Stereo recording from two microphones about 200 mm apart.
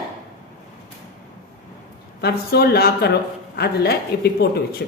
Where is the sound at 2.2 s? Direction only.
55° left (ahead or behind).